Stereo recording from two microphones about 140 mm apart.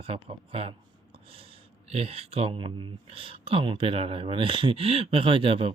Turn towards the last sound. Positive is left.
turn(degrees=-40)  # may be behind; listen again after turning